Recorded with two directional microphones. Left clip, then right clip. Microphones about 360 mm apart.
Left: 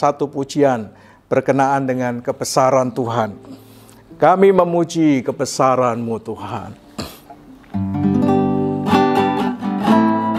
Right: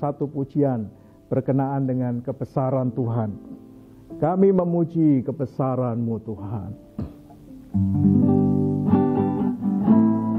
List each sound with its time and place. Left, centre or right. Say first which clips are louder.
0.0 s speech: left 9 dB; centre
6.0 s speech: left 6 dB; centre
6.4 s a sound: left 9 dB; centre
7.7 s music: left 3 dB; centre